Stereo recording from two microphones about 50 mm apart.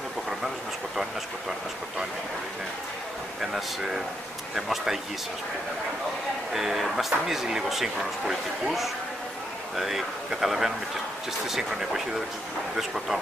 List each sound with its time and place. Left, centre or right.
3.3 s a man's voice: centre
6.5 s a man's voice: centre